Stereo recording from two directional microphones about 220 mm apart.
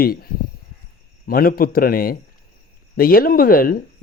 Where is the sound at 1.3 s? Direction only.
40° left (ahead or behind).